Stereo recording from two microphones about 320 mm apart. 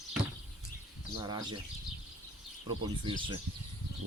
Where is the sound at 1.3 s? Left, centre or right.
Centre.